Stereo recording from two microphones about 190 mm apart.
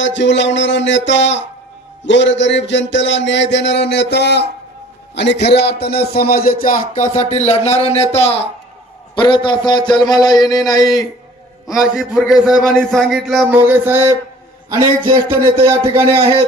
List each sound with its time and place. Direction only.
0.0 s mantra: 70° left (ahead or behind)
5.1 s a man's voice: 65° left (ahead or behind)
7.0 s a man's voice: 35° left (ahead or behind); by 11.1 s 20° left (ahead or behind)
11.8 s a man's voice: 5° right (ahead or behind); by 16.4 s 30° right (ahead or behind)